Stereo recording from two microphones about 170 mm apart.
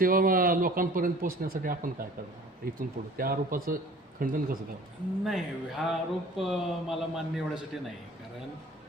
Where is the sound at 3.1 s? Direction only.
60° right (ahead or behind).